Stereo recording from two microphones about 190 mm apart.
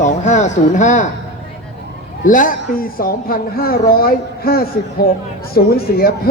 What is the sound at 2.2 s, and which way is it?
A woman's voice, 45° left (ahead or behind).